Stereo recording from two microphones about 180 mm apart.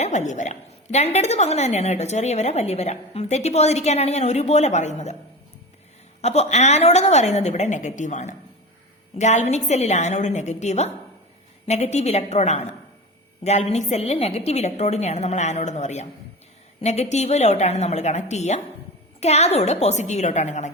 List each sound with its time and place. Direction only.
0.0 s a woman's voice: 40° left (ahead or behind)
6.2 s a woman's voice: 35° left (ahead or behind)